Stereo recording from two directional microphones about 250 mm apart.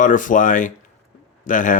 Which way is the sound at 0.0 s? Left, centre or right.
Left.